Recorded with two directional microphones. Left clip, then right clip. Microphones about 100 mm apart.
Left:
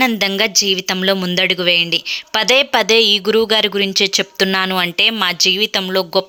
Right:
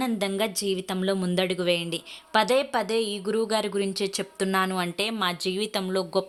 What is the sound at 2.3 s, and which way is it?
Speech, 30° left (ahead or behind).